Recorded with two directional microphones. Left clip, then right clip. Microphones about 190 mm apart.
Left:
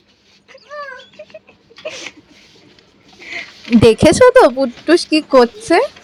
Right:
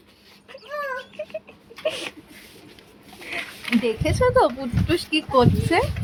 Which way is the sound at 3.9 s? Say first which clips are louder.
Left 14 dB; 40° left (ahead or behind).